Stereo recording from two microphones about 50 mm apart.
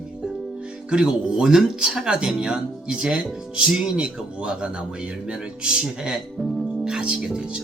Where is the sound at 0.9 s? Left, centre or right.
Centre.